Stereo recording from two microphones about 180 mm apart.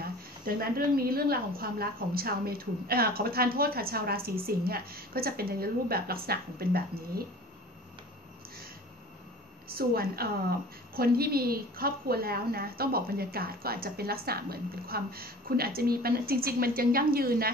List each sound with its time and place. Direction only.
0.0 s a woman's voice: 55° right (ahead or behind)
9.8 s a woman's voice: 55° right (ahead or behind)